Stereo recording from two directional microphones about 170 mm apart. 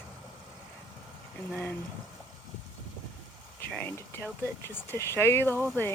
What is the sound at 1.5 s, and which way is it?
Speech, 5° left (ahead or behind).